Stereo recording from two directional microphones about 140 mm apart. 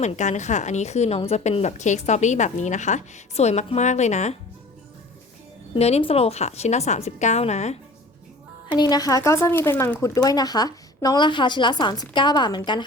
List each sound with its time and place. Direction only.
0.0 s a woman's voice: 60° left (ahead or behind)
5.7 s a woman's voice: 45° left (ahead or behind)
8.7 s speech: 30° left (ahead or behind)